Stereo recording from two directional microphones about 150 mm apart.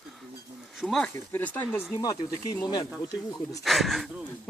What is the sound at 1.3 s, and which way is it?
Speech, 15° left (ahead or behind).